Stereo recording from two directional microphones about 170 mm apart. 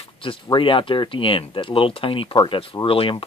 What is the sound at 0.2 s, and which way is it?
Speech, 30° left (ahead or behind).